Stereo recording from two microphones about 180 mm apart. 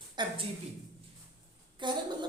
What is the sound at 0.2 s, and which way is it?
Speech, 25° right (ahead or behind).